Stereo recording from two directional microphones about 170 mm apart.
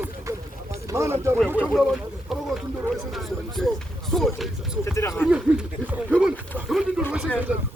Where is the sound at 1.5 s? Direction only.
10° left (ahead or behind).